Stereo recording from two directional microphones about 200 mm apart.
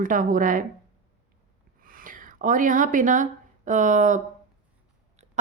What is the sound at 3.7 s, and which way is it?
Speech, 40° right (ahead or behind).